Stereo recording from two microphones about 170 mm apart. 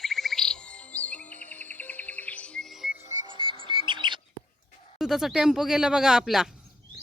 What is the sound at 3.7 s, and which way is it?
Bird, 30° right (ahead or behind).